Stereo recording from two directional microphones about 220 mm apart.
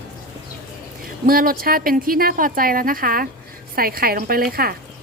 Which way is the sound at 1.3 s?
40° right (ahead or behind).